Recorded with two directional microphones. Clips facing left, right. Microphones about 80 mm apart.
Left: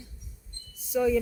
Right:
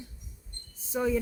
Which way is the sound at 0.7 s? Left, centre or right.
Right.